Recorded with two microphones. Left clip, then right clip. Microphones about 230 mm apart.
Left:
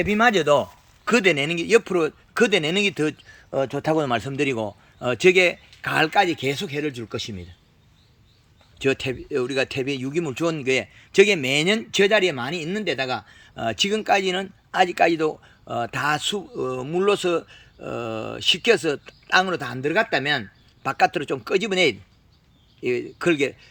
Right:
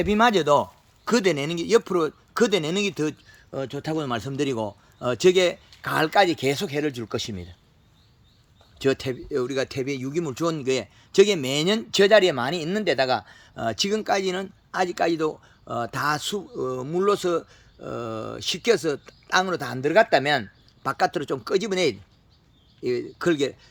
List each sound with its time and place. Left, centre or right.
0.0 s speech: centre
8.8 s speech: centre